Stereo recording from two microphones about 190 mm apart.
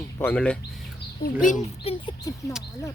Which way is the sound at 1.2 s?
45° left (ahead or behind).